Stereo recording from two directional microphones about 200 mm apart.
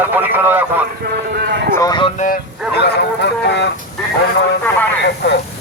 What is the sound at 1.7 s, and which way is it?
Speech, 20° left (ahead or behind).